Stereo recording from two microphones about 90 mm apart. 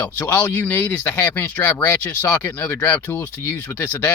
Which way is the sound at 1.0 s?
25° left (ahead or behind).